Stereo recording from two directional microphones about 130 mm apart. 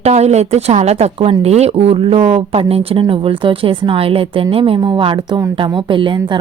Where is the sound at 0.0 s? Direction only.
60° right (ahead or behind).